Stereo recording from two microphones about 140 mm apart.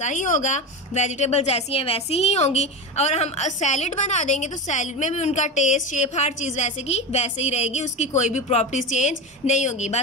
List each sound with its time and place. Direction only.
0.0 s a woman's voice: 65° left (ahead or behind)